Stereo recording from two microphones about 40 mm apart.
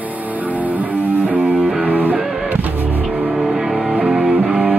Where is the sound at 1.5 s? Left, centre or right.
Centre.